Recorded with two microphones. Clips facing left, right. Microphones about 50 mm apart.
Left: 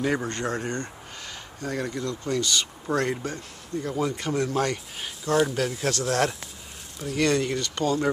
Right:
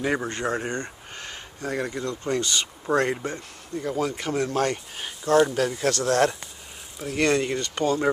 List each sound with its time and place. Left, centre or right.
0.0 s speech: centre
1.1 s speech: right; by 5.3 s centre
5.3 s speech: centre
7.1 s speech: right